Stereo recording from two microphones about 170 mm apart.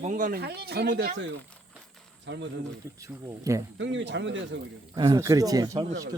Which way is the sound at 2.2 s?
90° right.